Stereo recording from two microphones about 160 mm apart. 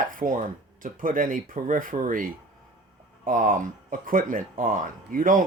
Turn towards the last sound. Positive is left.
turn(degrees=-55)  # may be behind; listen again after turning